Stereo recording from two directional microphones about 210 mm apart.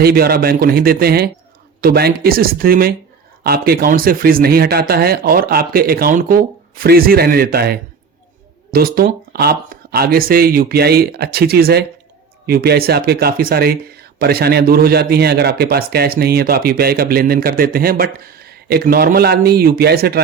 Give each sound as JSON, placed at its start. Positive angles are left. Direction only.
{"t": 0.0, "sound": "speech", "side_deg": -45}